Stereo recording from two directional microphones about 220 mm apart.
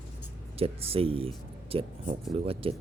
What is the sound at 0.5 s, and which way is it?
Speech, 25° right (ahead or behind).